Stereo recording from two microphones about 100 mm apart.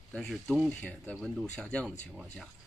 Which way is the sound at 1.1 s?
Centre (ahead or behind).